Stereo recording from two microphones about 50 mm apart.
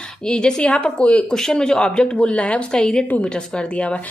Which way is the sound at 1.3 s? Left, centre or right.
Centre.